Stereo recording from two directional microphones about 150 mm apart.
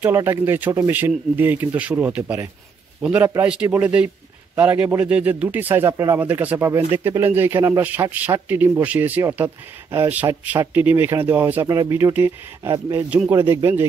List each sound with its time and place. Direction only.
0.0 s a man's voice: 15° right (ahead or behind)